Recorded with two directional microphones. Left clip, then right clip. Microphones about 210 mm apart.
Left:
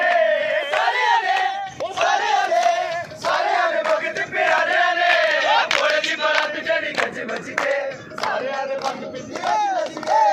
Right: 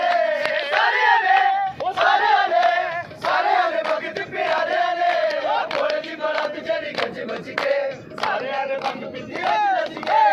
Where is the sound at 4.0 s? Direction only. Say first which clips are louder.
Left 4 dB; 60° right (ahead or behind); by 5.8 s 40° right (ahead or behind).